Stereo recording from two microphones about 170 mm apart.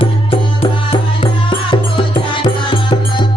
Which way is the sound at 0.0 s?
35° left (ahead or behind).